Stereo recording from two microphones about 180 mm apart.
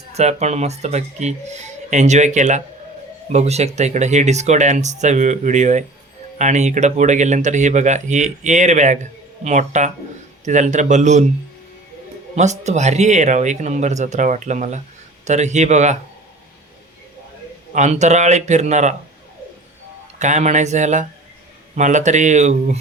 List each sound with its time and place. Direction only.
0.1 s speech: 40° right (ahead or behind)
12.4 s speech: 40° right (ahead or behind)
17.7 s speech: 40° right (ahead or behind)
20.1 s speech: 40° right (ahead or behind)